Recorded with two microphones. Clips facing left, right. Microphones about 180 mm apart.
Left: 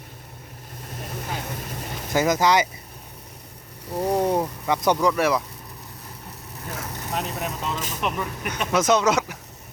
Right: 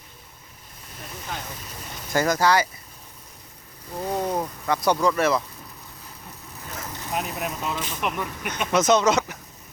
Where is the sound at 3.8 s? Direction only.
75° left (ahead or behind).